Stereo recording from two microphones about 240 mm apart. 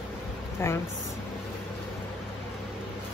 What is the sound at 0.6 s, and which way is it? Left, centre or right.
Speech, centre.